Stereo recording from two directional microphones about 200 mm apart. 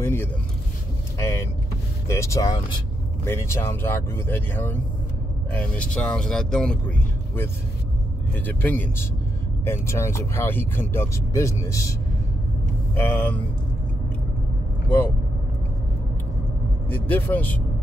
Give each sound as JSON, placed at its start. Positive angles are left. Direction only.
{"t": 0.0, "sound": "vehicle", "side_deg": 10}
{"t": 1.1, "sound": "speech", "side_deg": 15}
{"t": 8.5, "sound": "speech", "side_deg": 10}
{"t": 12.9, "sound": "speech", "side_deg": 10}
{"t": 16.9, "sound": "speech", "side_deg": 10}